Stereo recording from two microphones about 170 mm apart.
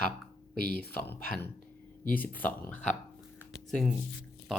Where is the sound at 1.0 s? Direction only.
10° left (ahead or behind).